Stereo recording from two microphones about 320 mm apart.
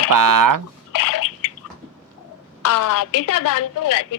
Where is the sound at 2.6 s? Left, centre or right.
Left.